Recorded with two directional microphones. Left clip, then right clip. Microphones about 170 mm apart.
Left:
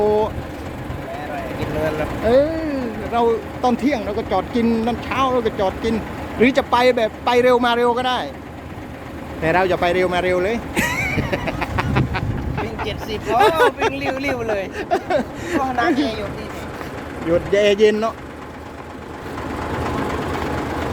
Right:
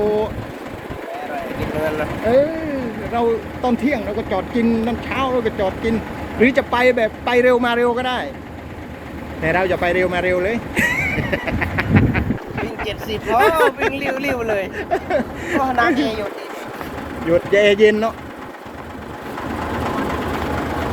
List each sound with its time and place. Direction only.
2.3 s speech: 30° left (ahead or behind)
9.4 s a sound: 30° left (ahead or behind)
13.3 s speech: 15° left (ahead or behind)
13.9 s speech: 5° left (ahead or behind)
14.8 s speech: 30° left (ahead or behind)
15.6 s a woman's voice: 20° right (ahead or behind)
16.0 s speech: 10° right (ahead or behind)
17.2 s speech: 5° left (ahead or behind)